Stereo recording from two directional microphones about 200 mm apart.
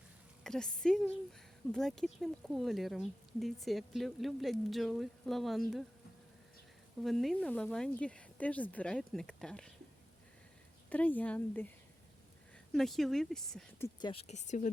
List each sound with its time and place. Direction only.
0.4 s speech: 5° left (ahead or behind)
7.0 s speech: centre (ahead or behind)
10.8 s a woman's voice: 5° left (ahead or behind)
12.7 s speech: centre (ahead or behind)
13.8 s speech: 20° left (ahead or behind)
14.3 s speech: 35° left (ahead or behind)